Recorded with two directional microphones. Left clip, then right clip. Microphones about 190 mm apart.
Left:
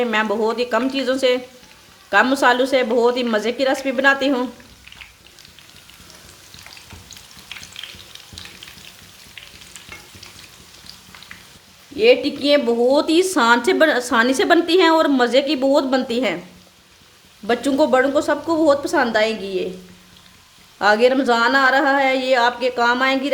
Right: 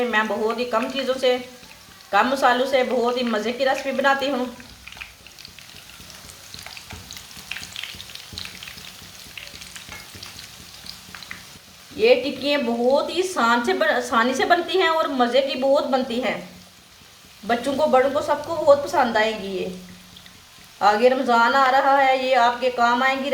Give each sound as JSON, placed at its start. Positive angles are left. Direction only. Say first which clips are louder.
{"t": 0.0, "sound": "a woman's voice", "louder": "left 2 dB", "side_deg": 55}
{"t": 11.9, "sound": "a woman's voice", "louder": "left 3 dB", "side_deg": 55}
{"t": 17.4, "sound": "a woman's voice", "louder": "left 3 dB", "side_deg": 55}
{"t": 20.7, "sound": "a woman's voice", "louder": "left 2 dB", "side_deg": 55}